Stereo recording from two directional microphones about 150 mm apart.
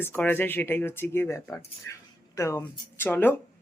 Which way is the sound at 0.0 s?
15° left (ahead or behind).